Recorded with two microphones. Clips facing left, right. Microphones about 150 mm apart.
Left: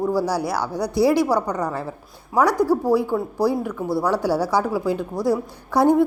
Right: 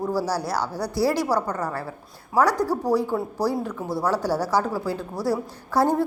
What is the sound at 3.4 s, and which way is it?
A woman's voice, 10° left (ahead or behind).